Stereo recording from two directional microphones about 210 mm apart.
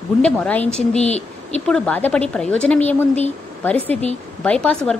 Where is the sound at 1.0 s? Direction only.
30° left (ahead or behind).